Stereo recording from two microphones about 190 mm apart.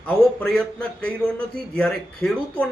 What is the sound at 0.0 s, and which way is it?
Speech, 5° left (ahead or behind).